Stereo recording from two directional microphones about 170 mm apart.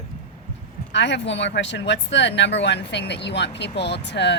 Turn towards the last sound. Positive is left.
turn(degrees=90)